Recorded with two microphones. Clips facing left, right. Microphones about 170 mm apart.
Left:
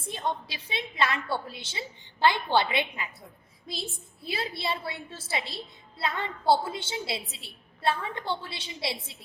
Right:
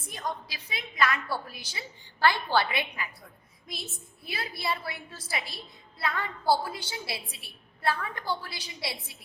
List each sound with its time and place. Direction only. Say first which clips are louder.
0.0 s a woman's voice: left 4 dB; 25° left (ahead or behind)